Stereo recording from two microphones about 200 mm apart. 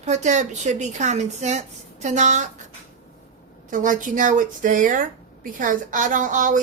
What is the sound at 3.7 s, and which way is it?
Speech, 40° right (ahead or behind).